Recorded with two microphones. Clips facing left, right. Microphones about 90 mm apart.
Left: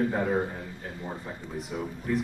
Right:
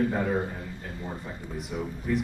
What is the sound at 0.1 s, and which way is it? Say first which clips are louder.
A man's voice: even; 5° left (ahead or behind).